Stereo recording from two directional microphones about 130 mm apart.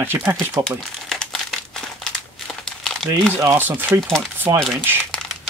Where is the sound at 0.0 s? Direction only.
15° right (ahead or behind).